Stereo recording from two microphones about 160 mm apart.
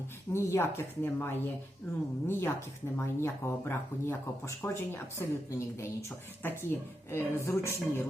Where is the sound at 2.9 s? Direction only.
15° left (ahead or behind).